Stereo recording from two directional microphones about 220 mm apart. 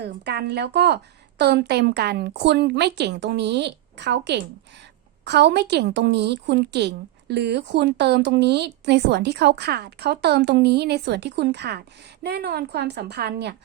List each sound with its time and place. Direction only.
0.0 s a woman's voice: 50° right (ahead or behind)